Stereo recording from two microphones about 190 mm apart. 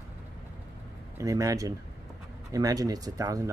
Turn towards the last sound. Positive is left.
turn(degrees=-15)  # may be behind; listen again after turning